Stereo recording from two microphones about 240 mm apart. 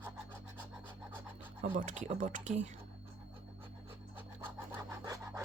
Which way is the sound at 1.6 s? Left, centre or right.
Right.